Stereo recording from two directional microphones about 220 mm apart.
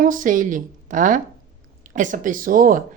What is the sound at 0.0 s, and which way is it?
A woman's voice, 35° right (ahead or behind).